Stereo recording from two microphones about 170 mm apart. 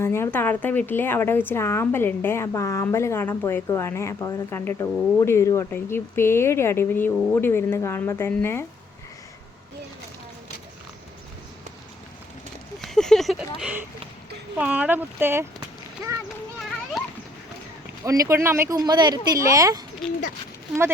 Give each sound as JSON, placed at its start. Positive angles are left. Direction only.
{"t": 0.0, "sound": "speech", "side_deg": 15}
{"t": 12.8, "sound": "a sound", "side_deg": 5}
{"t": 14.6, "sound": "speech", "side_deg": -10}
{"t": 18.0, "sound": "speech", "side_deg": -20}